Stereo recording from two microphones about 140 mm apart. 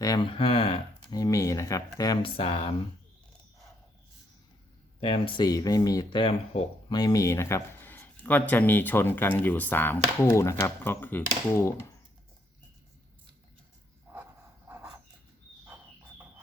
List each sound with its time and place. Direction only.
0.0 s a sound: 25° left (ahead or behind)
0.3 s speech: 40° left (ahead or behind)
1.1 s speech: 25° left (ahead or behind)
2.2 s speech: 40° left (ahead or behind)
4.9 s speech: 40° left (ahead or behind)
5.5 s speech: 25° left (ahead or behind)
6.2 s speech: 50° left (ahead or behind)
6.8 s speech: 30° left (ahead or behind)
14.1 s dog: 15° right (ahead or behind)
15.6 s a sound: 15° right (ahead or behind)